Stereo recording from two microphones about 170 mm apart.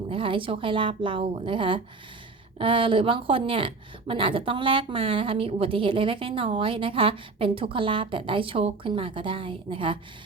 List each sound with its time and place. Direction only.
0.1 s a woman's voice: 30° right (ahead or behind)